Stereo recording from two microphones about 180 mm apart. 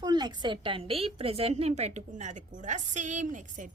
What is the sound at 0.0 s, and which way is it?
A woman's voice, 25° right (ahead or behind).